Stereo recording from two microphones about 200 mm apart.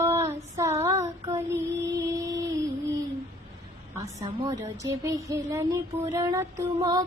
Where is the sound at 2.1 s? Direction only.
15° right (ahead or behind).